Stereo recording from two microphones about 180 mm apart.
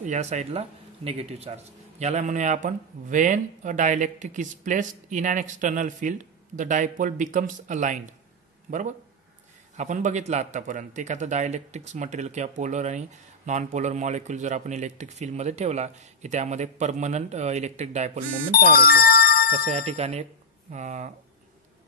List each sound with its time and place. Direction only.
0.0 s a man's voice: 40° right (ahead or behind)
18.8 s doorbell: 55° left (ahead or behind)
19.5 s a man's voice: 40° right (ahead or behind)